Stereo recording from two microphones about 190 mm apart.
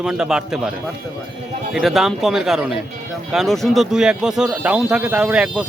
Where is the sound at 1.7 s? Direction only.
Centre (ahead or behind).